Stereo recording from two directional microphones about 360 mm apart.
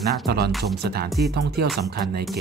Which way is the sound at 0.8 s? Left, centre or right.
Right.